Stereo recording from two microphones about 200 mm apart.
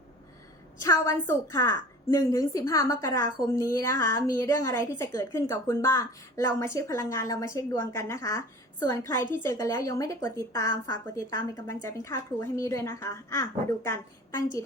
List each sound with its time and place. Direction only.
0.8 s a woman's voice: 15° left (ahead or behind)